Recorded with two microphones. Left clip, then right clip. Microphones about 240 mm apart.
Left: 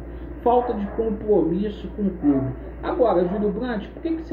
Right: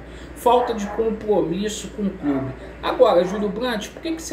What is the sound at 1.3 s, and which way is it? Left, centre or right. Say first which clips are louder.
Speech: left 1 dB; right.